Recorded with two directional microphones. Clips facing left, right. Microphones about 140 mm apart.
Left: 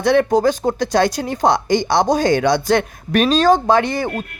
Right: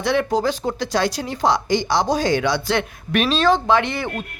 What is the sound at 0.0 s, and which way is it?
A woman's voice, 50° left (ahead or behind).